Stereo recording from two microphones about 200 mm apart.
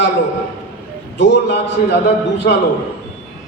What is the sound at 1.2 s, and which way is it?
Speech, 65° left (ahead or behind).